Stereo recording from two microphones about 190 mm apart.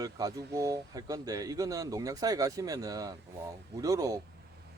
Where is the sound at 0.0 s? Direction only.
20° right (ahead or behind).